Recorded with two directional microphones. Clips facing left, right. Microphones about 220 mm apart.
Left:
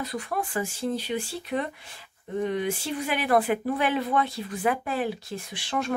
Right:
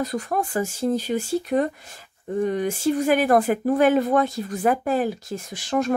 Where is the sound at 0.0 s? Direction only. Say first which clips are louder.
Right 6 dB; 45° right (ahead or behind).